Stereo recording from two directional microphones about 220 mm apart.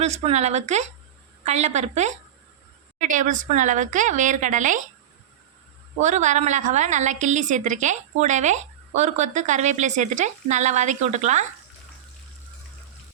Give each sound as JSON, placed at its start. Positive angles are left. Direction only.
{"t": 0.0, "sound": "a woman's voice", "side_deg": -30}
{"t": 6.0, "sound": "a woman's voice", "side_deg": -35}